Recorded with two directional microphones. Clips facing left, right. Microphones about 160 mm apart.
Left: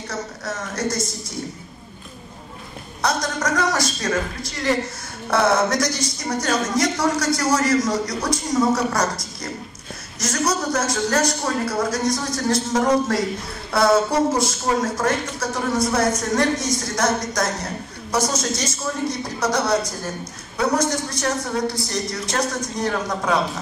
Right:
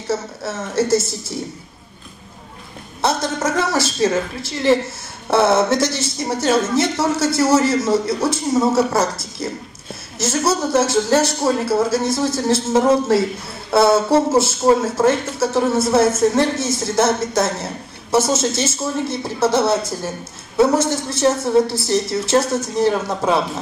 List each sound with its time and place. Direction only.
0.4 s speech: 25° right (ahead or behind)
3.0 s speech: 25° right (ahead or behind)
10.1 s speech: 25° right (ahead or behind)